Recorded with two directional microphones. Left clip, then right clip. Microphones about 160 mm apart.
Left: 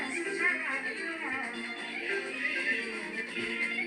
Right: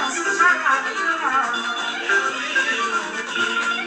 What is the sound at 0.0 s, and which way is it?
Music, 30° right (ahead or behind).